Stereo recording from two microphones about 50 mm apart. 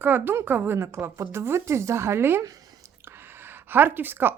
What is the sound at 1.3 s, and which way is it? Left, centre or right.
Speech, right.